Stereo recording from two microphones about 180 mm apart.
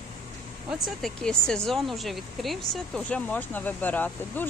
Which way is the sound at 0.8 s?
5° left (ahead or behind).